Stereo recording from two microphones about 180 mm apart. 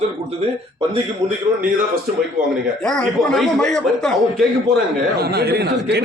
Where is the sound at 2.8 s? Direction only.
5° left (ahead or behind).